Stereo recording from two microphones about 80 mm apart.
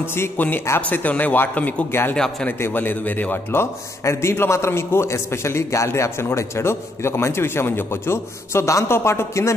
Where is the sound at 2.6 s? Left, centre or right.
Left.